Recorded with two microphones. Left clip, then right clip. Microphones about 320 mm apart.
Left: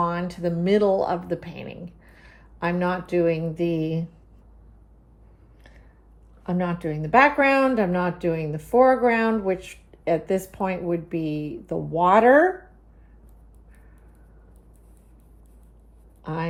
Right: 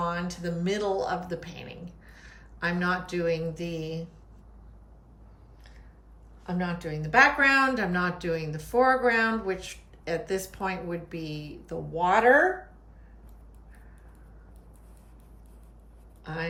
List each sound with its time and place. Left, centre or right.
0.0 s speech: centre
6.4 s speech: left